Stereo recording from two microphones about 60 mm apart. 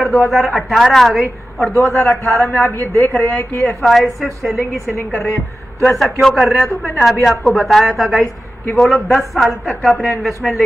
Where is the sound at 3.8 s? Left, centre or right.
Centre.